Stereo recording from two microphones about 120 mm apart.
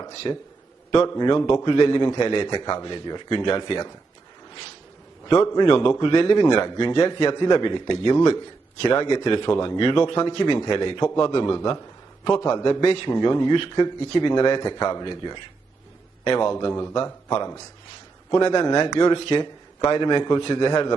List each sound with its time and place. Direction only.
0.2 s a man's voice: 35° left (ahead or behind)
5.8 s a man's voice: 45° left (ahead or behind)
8.8 s a man's voice: 45° left (ahead or behind)
12.8 s speech: 50° left (ahead or behind)
13.1 s a man's voice: 35° left (ahead or behind)
16.5 s a man's voice: 35° left (ahead or behind)
18.3 s a man's voice: 40° left (ahead or behind)
18.9 s a man's voice: 50° left (ahead or behind)